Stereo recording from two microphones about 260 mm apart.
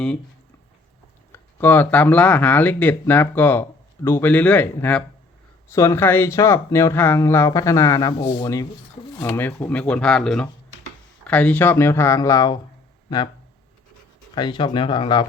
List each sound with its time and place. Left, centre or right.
1.3 s speech: centre
14.3 s speech: centre